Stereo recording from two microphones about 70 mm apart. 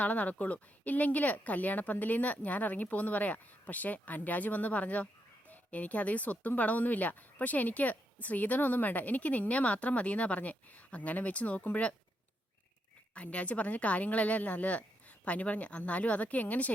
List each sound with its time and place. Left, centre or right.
0.0 s speech: left
13.1 s speech: centre